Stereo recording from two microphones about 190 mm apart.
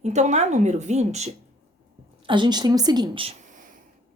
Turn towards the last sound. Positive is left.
turn(degrees=-25)  # may be behind; listen again after turning